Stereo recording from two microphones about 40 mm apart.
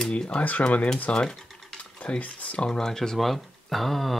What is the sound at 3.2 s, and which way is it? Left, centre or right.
Speech, centre.